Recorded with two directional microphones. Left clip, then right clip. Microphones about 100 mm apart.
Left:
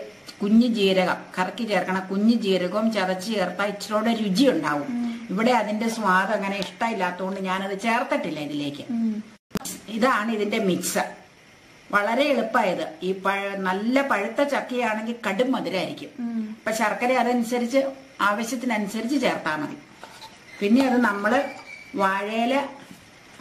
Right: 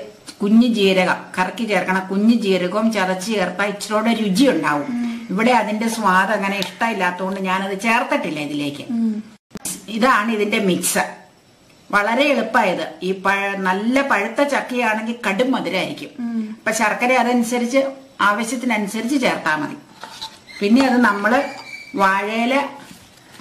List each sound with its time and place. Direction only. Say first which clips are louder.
0.4 s a woman's voice: right 5 dB; 15° left (ahead or behind)
9.8 s a woman's voice: right 6 dB; 10° left (ahead or behind)